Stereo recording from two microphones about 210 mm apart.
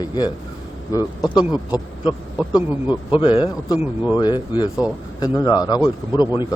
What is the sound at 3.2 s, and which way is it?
A man's voice, 25° left (ahead or behind).